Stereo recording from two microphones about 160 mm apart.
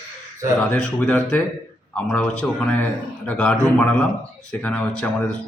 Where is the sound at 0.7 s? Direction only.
10° left (ahead or behind).